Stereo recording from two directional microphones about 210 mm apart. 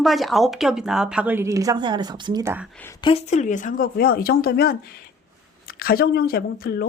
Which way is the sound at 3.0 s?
25° left (ahead or behind).